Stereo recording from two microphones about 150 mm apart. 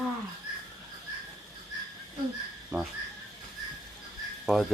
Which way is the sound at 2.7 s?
15° right (ahead or behind).